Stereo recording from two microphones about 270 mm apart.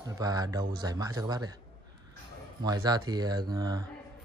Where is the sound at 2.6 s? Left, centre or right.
Centre.